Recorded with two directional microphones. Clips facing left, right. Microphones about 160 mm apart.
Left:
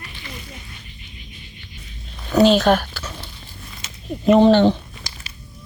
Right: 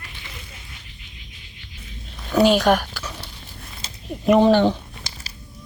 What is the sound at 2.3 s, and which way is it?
Speech, 10° right (ahead or behind).